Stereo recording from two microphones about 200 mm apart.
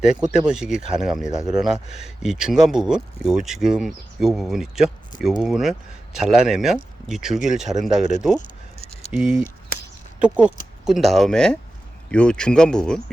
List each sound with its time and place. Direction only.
0.0 s speech: 5° right (ahead or behind)
8.4 s keys jangling: 35° left (ahead or behind)
9.0 s speech: 5° right (ahead or behind)